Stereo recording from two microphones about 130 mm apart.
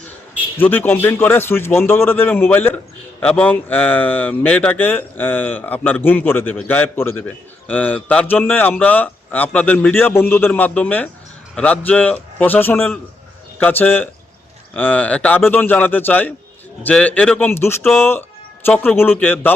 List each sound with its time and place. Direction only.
0.6 s a man's voice: 15° left (ahead or behind)